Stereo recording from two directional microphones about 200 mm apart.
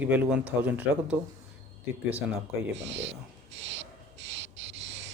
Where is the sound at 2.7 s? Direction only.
65° right (ahead or behind).